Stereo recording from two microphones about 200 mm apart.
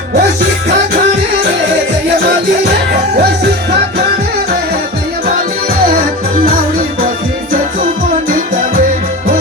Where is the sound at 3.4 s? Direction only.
55° right (ahead or behind).